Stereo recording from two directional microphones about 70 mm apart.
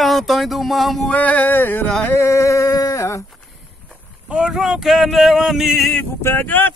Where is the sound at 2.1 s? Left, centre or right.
Left.